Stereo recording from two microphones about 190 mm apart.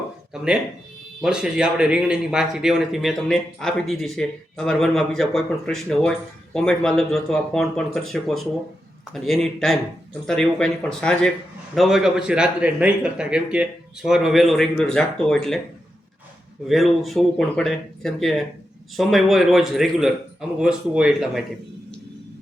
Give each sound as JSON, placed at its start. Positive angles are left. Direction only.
{"t": 1.2, "sound": "a man's voice", "side_deg": -5}
{"t": 16.6, "sound": "a man's voice", "side_deg": 0}